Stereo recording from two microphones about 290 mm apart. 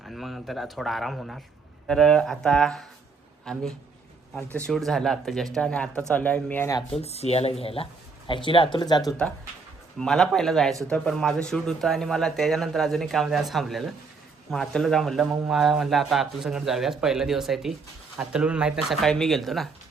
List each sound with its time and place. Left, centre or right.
0.0 s speech: centre
7.0 s speech: left
10.0 s speech: centre